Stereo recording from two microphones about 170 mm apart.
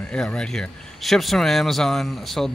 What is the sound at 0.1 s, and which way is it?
Speech, 5° left (ahead or behind).